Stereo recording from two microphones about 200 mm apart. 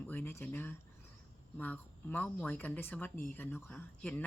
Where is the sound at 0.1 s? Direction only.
10° left (ahead or behind).